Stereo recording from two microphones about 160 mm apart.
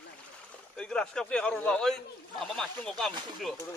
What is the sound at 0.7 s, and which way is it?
Speech, 5° left (ahead or behind).